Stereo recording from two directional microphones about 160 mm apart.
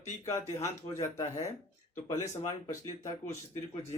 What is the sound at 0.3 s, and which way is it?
Speech, 20° left (ahead or behind).